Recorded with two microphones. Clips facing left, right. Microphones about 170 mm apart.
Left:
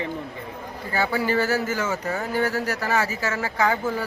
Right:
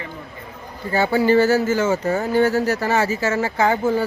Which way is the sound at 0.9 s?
25° right (ahead or behind).